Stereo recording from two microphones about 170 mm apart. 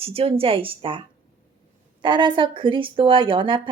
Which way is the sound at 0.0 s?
35° right (ahead or behind).